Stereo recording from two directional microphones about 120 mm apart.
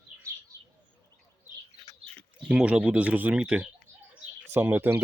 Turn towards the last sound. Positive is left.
turn(degrees=-15)  # may be behind; listen again after turning